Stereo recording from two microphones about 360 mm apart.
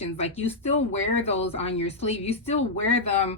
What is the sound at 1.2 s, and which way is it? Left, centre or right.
A woman's voice, centre.